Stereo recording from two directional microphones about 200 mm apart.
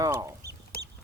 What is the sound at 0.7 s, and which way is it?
Duck, 50° left (ahead or behind).